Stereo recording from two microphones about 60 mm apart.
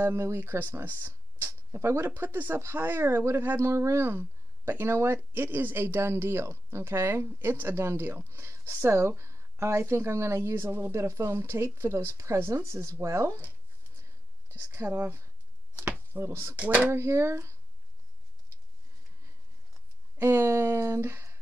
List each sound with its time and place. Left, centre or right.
0.0 s speech: right
14.5 s speech: right
15.7 s a sound: right
16.3 s speech: right
16.5 s speech: right
16.9 s speech: right
20.2 s speech: right